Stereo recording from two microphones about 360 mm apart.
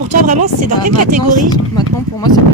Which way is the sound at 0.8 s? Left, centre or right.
Right.